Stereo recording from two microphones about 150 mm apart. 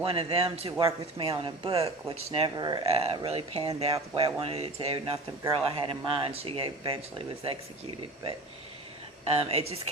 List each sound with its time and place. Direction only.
0.0 s speech: 40° right (ahead or behind)
2.8 s speech: 40° right (ahead or behind)
9.3 s speech: 40° right (ahead or behind)